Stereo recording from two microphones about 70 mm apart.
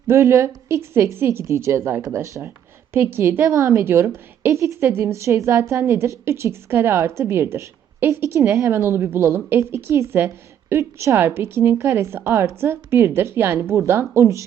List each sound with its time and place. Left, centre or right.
0.1 s a woman's voice: right
2.9 s a woman's voice: right
8.7 s a woman's voice: right